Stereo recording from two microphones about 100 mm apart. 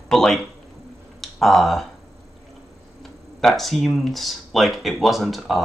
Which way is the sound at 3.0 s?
5° left (ahead or behind).